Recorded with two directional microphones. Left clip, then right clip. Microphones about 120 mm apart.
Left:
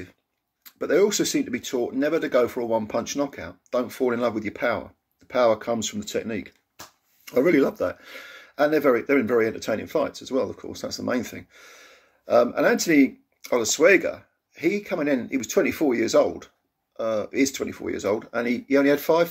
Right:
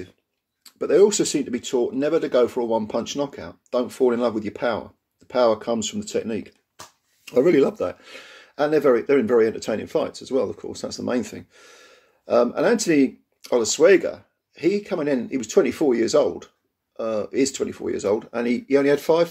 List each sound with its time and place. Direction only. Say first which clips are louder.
0.7 s speech: right 4 dB; 20° right (ahead or behind)